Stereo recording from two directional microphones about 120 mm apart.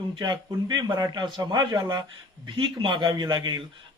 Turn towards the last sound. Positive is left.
turn(degrees=-35)  # may be behind; listen again after turning